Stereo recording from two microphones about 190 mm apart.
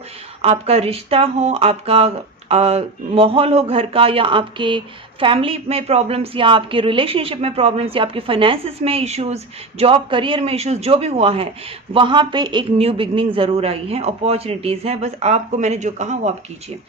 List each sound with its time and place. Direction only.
0.4 s a woman's voice: 35° right (ahead or behind)